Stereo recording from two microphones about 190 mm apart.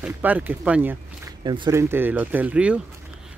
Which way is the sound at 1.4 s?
25° right (ahead or behind).